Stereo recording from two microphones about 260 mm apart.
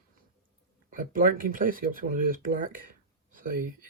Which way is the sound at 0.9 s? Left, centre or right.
Right.